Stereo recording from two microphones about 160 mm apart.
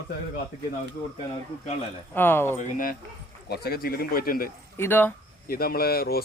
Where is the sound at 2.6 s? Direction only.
60° left (ahead or behind).